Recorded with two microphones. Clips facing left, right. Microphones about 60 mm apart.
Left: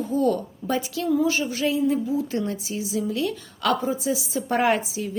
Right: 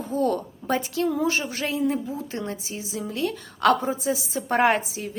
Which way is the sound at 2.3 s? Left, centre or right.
Right.